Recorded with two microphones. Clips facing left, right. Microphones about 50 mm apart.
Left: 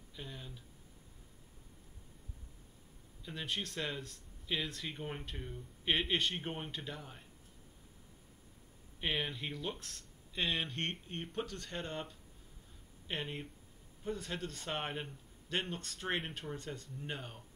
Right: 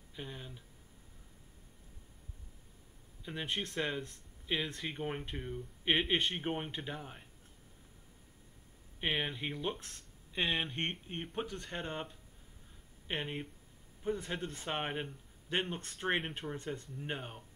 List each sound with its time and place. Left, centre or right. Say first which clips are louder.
0.1 s speech: right 3 dB; centre
3.3 s speech: right 2 dB; right
9.0 s speech: right 2 dB; centre